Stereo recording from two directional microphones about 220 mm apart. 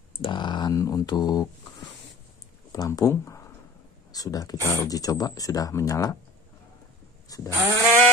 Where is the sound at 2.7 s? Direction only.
15° left (ahead or behind).